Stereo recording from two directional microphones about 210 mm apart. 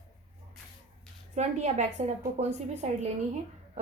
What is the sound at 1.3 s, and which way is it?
A woman's voice, 30° right (ahead or behind).